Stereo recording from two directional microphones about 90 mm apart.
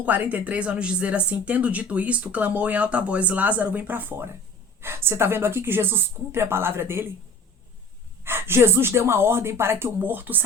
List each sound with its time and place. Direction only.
0.0 s speech: 15° right (ahead or behind)
8.2 s speech: 25° right (ahead or behind)